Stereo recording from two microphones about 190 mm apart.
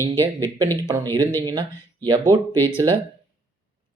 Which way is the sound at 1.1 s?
10° left (ahead or behind).